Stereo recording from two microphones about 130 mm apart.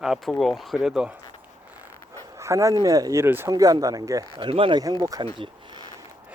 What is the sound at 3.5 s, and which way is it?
Speech, 30° right (ahead or behind).